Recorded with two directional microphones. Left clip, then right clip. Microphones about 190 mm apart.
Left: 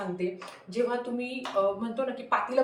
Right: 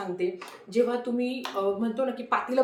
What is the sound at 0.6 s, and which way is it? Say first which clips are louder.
A woman's voice: right 3 dB; 20° right (ahead or behind).